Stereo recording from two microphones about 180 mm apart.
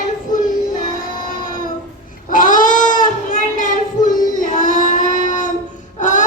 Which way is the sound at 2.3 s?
50° left (ahead or behind).